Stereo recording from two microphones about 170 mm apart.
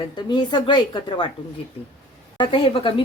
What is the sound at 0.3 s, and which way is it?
Speech, 25° left (ahead or behind).